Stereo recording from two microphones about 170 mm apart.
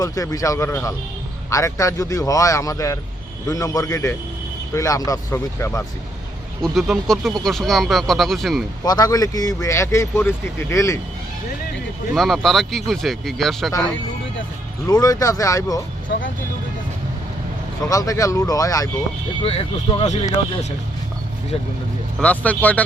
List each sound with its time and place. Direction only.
0.0 s speech: 20° left (ahead or behind)
6.6 s speech: centre (ahead or behind)
8.8 s speech: 25° left (ahead or behind)
12.1 s speech: centre (ahead or behind)
14.8 s speech: 20° left (ahead or behind)
16.1 s speech: 75° left (ahead or behind)
17.8 s speech: 20° left (ahead or behind)
19.4 s speech: 35° left (ahead or behind)
22.2 s speech: 10° left (ahead or behind)